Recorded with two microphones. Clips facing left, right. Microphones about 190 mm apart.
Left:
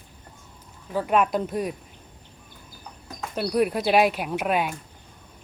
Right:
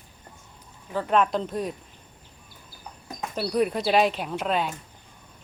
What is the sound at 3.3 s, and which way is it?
Speech, 5° left (ahead or behind).